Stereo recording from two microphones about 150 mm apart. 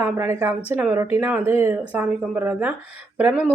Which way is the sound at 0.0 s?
15° right (ahead or behind).